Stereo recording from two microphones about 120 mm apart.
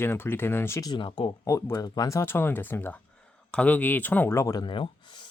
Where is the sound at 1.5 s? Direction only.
25° left (ahead or behind).